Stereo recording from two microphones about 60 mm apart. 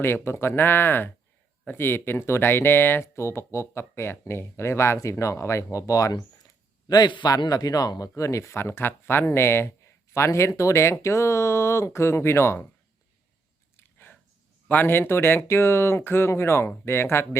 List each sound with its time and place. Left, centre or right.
0.0 s speech: left
6.8 s speech: left
14.7 s speech: left